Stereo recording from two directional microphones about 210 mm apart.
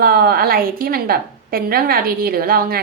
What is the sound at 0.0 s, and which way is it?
A woman's voice, 45° right (ahead or behind).